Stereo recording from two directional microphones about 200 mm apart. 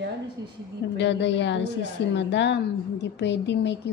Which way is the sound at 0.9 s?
60° left (ahead or behind).